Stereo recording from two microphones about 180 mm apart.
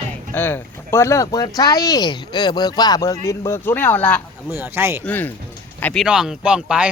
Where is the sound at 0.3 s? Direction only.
10° left (ahead or behind).